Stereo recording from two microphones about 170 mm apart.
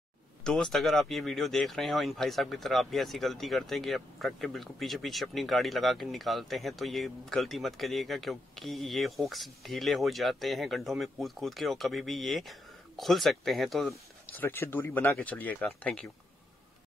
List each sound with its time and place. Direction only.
0.4 s speech: 5° left (ahead or behind)
14.3 s speech: 10° left (ahead or behind)